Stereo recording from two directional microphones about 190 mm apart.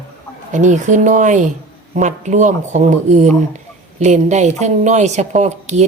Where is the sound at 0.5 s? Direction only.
40° right (ahead or behind).